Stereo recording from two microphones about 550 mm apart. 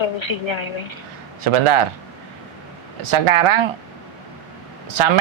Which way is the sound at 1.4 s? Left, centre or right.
Right.